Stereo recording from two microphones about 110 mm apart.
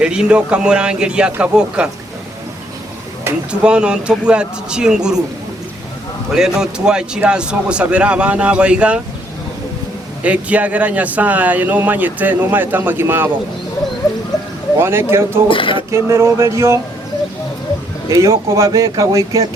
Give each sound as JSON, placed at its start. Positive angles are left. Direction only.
{"t": 0.0, "sound": "speech", "side_deg": -10}
{"t": 3.5, "sound": "speech", "side_deg": -10}
{"t": 6.3, "sound": "speech", "side_deg": -5}
{"t": 10.2, "sound": "speech", "side_deg": -10}
{"t": 14.8, "sound": "speech", "side_deg": -20}
{"t": 15.4, "sound": "speech", "side_deg": 50}
{"t": 15.9, "sound": "speech", "side_deg": -25}
{"t": 18.1, "sound": "speech", "side_deg": -30}